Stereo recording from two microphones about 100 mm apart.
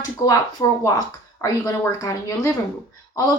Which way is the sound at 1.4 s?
30° left (ahead or behind).